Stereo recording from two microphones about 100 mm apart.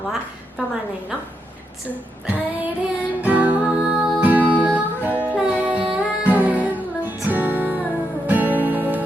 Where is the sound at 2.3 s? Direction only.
15° right (ahead or behind).